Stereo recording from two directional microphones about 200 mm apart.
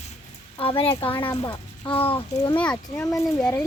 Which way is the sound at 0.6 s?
25° left (ahead or behind).